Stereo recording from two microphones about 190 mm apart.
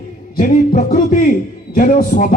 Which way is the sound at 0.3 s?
45° left (ahead or behind).